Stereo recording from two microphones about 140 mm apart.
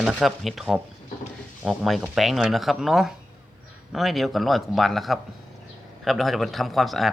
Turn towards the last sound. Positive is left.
turn(degrees=0)  # may be behind; listen again after turning